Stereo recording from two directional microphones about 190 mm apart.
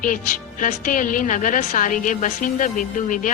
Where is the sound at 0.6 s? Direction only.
45° left (ahead or behind).